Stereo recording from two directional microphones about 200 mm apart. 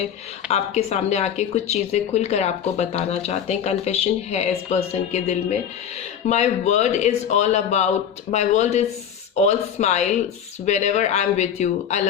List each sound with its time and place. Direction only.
0.4 s speech: 35° left (ahead or behind)